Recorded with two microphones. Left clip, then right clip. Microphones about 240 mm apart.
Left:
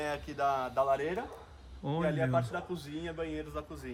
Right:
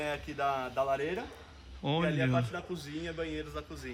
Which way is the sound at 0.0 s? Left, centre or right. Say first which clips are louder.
Left 1 dB; centre.